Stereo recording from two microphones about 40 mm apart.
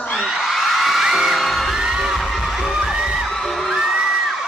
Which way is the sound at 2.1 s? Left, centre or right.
Centre.